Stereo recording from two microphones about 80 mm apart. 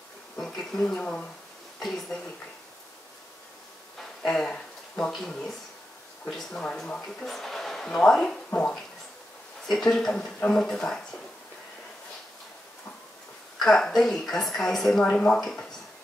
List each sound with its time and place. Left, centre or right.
0.4 s speech: centre
4.0 s a sound: centre
5.1 s speech: centre
8.5 s a sound: centre
9.7 s speech: centre
13.6 s speech: centre